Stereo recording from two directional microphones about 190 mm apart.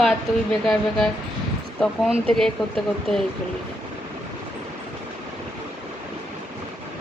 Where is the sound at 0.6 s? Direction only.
Centre (ahead or behind).